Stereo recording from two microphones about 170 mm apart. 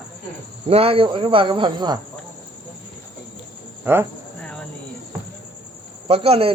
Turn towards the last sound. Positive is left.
turn(degrees=-35)  # may be behind; listen again after turning